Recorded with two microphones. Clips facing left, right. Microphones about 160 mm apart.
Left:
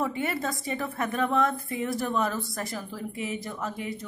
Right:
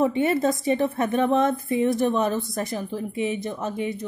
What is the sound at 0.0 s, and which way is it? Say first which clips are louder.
A woman's voice: right 8 dB; 25° right (ahead or behind).